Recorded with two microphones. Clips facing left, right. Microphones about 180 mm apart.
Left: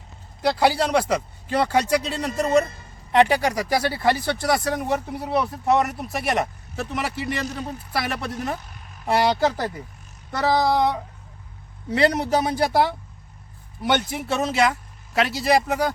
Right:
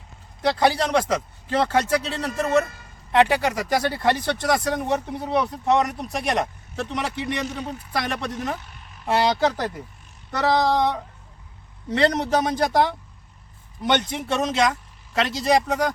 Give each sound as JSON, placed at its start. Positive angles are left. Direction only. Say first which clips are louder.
{"t": 0.4, "sound": "speech", "louder": "even", "side_deg": 10}